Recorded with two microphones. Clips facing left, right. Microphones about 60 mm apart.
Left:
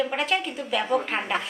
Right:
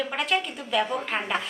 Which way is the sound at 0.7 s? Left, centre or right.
Centre.